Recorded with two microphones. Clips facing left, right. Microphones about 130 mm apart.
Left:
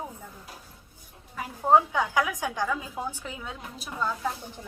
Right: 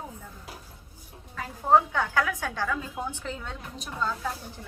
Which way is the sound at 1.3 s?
15° left (ahead or behind).